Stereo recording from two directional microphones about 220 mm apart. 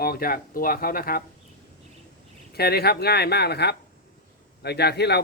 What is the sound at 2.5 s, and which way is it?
Speech, 45° left (ahead or behind).